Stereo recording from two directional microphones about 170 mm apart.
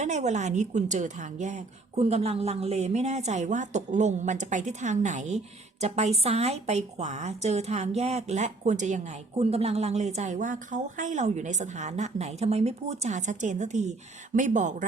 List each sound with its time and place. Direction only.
0.0 s a woman's voice: 40° right (ahead or behind)